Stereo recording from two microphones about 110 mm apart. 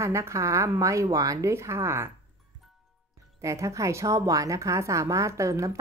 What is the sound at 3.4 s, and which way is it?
Speech, 30° right (ahead or behind).